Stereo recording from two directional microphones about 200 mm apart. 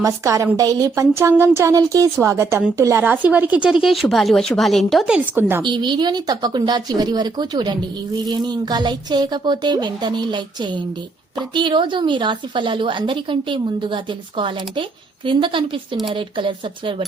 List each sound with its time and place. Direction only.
0.0 s a woman's voice: 15° right (ahead or behind)
5.6 s speech: 25° right (ahead or behind)